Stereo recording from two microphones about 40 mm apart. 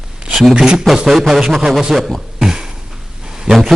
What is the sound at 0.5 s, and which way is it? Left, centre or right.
Speech, centre.